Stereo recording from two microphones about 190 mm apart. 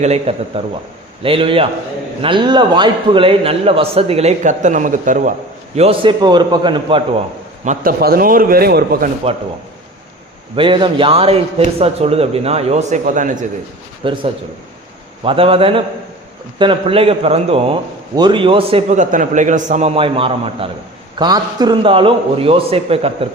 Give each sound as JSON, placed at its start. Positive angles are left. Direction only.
{"t": 0.0, "sound": "a man's voice", "side_deg": -35}
{"t": 5.7, "sound": "a man's voice", "side_deg": -30}
{"t": 7.6, "sound": "a man's voice", "side_deg": -40}
{"t": 10.5, "sound": "a man's voice", "side_deg": -25}
{"t": 14.0, "sound": "a man's voice", "side_deg": -25}
{"t": 15.2, "sound": "a man's voice", "side_deg": -30}